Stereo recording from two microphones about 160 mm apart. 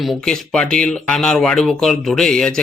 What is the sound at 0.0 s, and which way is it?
Speech, centre (ahead or behind).